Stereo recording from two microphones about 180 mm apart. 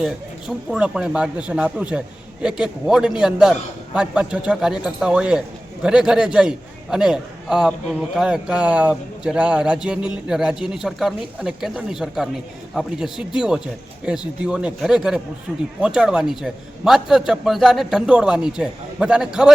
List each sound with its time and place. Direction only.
0.0 s a man's voice: 5° right (ahead or behind)